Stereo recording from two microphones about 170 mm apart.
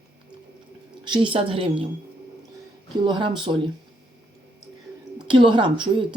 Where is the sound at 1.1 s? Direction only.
30° right (ahead or behind).